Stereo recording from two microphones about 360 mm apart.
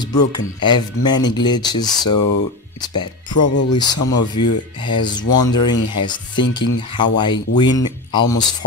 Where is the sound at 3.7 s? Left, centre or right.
Centre.